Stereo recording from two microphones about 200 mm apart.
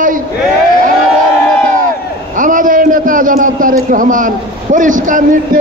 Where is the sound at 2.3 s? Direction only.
40° right (ahead or behind).